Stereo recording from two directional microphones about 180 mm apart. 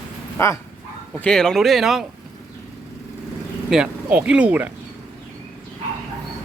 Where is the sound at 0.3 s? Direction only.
15° left (ahead or behind).